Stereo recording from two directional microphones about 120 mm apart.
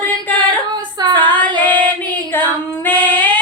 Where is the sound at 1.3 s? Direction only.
10° left (ahead or behind).